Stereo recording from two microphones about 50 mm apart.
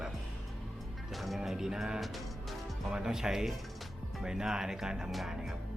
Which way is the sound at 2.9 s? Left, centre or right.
Centre.